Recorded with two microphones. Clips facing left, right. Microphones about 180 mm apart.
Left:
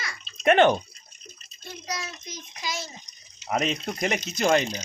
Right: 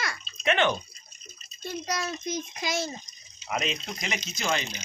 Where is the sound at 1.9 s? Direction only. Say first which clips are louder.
Right 4 dB; 55° right (ahead or behind).